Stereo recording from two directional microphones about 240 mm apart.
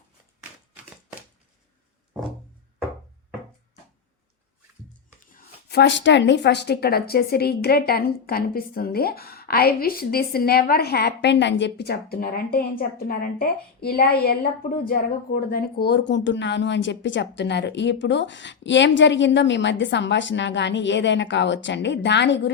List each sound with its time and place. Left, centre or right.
5.2 s speech: left